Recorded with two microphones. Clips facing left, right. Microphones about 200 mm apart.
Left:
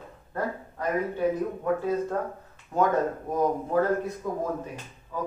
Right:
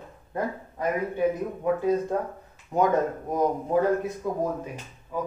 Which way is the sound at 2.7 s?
15° right (ahead or behind).